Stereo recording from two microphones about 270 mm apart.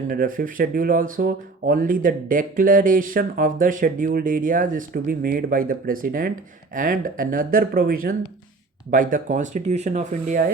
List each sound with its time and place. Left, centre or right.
0.1 s speech: right